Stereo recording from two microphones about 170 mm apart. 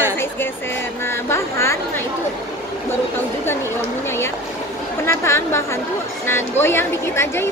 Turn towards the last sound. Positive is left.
turn(degrees=15)  # may be behind; listen again after turning